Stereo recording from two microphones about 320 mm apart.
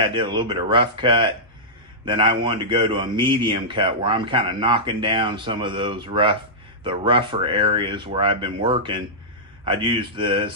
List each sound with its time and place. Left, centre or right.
0.0 s speech: centre